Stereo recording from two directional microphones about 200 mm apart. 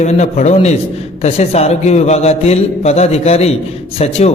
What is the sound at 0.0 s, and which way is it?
A man's voice, 35° left (ahead or behind).